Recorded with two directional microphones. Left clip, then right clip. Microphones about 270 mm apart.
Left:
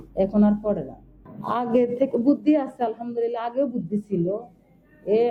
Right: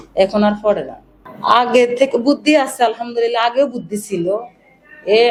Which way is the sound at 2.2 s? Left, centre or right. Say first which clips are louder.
Right 6 dB; right.